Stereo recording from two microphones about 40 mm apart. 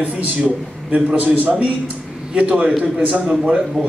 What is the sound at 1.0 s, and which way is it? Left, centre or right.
Speech, right.